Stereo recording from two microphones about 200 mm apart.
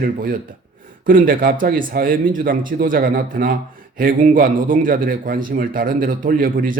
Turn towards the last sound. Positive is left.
turn(degrees=-45)  # may be behind; listen again after turning